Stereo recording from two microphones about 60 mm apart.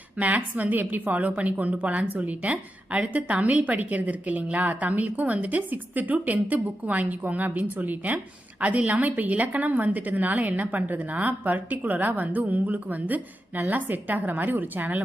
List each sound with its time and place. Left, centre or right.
0.2 s a woman's voice: right